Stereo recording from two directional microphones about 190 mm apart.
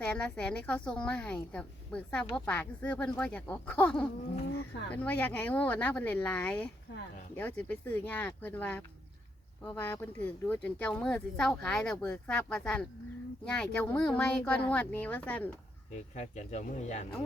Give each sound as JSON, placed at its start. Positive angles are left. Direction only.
{"t": 0.0, "sound": "a woman's voice", "side_deg": 5}
{"t": 16.1, "sound": "speech", "side_deg": 35}